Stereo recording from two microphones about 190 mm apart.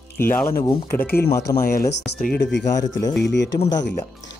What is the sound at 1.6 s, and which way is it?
Speech, 50° left (ahead or behind).